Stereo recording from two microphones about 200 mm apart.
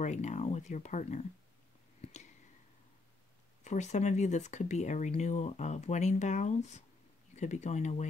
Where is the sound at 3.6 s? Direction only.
35° left (ahead or behind).